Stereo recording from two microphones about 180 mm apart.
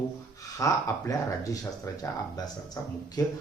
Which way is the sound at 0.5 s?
20° left (ahead or behind).